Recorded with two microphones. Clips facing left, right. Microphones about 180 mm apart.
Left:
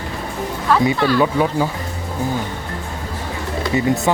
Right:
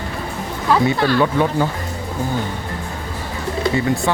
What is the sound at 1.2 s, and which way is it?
Speech, 10° left (ahead or behind).